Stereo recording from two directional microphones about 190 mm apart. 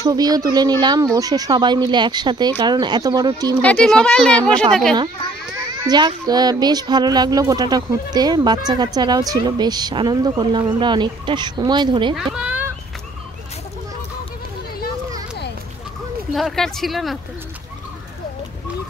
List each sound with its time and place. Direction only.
0.0 s speech: 20° right (ahead or behind)
3.6 s speech: 5° left (ahead or behind)
5.9 s speech: 20° right (ahead or behind)
12.2 s children playing: 5° right (ahead or behind)
16.3 s speech: centre (ahead or behind)